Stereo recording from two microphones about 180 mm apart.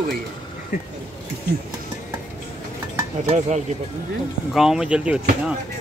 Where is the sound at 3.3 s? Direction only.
40° right (ahead or behind).